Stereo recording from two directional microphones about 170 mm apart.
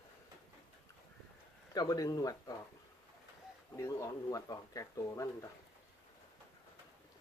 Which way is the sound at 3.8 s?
20° left (ahead or behind).